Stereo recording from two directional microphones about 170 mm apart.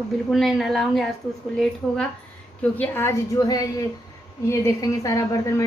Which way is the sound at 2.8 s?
15° left (ahead or behind).